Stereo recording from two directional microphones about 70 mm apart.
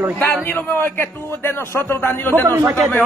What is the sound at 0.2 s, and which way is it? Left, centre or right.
Speech, left.